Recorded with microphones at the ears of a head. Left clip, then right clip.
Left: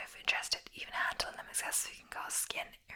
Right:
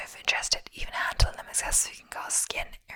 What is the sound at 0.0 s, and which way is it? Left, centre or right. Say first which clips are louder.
Whispering: right 7 dB; right.